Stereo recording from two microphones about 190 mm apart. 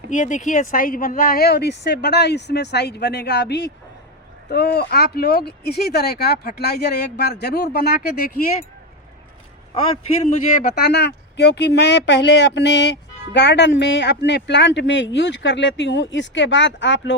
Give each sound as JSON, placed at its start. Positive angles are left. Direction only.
{"t": 0.1, "sound": "speech", "side_deg": 40}
{"t": 10.2, "sound": "speech", "side_deg": 40}
{"t": 10.8, "sound": "speech", "side_deg": 60}